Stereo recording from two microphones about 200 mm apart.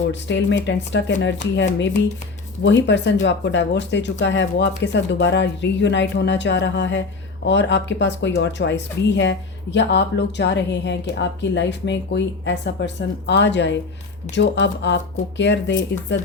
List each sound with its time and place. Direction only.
0.1 s speech: 60° left (ahead or behind)
2.6 s speech: 60° left (ahead or behind)